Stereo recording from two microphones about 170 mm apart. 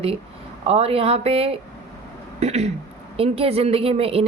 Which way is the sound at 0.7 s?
35° right (ahead or behind).